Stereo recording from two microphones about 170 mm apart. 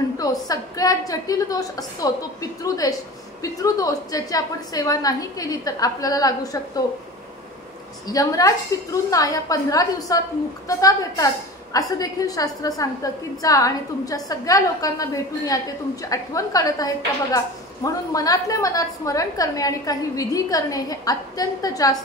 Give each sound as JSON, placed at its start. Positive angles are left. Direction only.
{"t": 0.2, "sound": "a woman's voice", "side_deg": 20}
{"t": 8.1, "sound": "a woman's voice", "side_deg": 20}